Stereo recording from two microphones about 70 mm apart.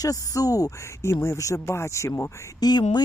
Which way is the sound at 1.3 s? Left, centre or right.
Left.